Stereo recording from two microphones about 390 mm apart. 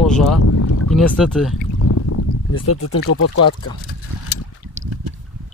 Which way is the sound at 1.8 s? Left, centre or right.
Left.